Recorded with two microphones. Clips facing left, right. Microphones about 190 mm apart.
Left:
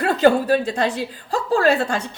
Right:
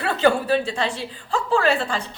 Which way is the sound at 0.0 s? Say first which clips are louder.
Left 4 dB; 40° left (ahead or behind).